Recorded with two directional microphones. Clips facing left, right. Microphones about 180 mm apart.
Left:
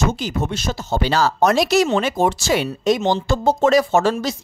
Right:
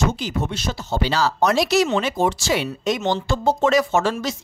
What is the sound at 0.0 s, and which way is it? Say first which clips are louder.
Speech: left 1 dB; 45° left (ahead or behind).